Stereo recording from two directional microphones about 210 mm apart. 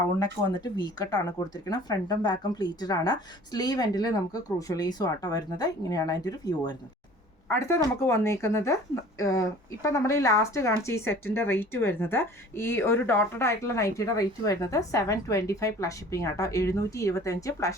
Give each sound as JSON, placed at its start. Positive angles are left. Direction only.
{"t": 0.2, "sound": "speech", "side_deg": 20}